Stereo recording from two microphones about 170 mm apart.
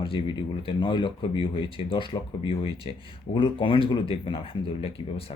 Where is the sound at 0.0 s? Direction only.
30° left (ahead or behind).